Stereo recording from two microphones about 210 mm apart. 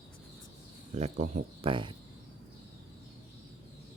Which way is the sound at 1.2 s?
25° right (ahead or behind).